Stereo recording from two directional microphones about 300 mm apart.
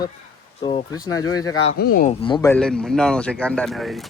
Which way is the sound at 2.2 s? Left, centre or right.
Centre.